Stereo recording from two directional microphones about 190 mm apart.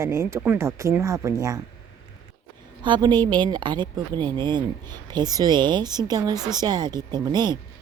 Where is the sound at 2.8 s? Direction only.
25° right (ahead or behind).